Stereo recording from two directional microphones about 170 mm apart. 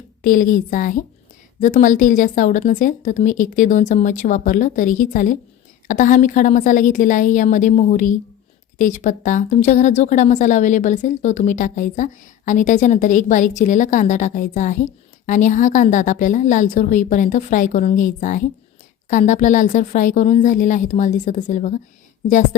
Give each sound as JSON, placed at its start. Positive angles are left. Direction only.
{"t": 0.2, "sound": "a woman's voice", "side_deg": 50}